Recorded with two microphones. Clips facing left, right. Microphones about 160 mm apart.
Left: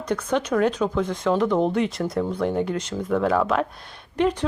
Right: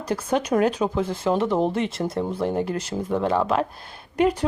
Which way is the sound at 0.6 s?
10° right (ahead or behind).